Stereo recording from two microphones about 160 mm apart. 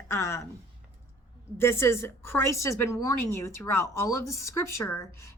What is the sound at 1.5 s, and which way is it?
A woman's voice, 15° left (ahead or behind).